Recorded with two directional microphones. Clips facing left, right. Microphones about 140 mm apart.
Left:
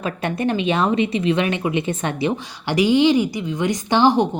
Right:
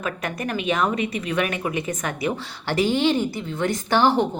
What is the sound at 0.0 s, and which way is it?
A woman's voice, 30° left (ahead or behind).